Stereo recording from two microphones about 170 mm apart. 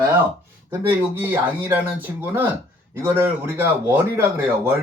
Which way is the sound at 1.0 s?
10° right (ahead or behind).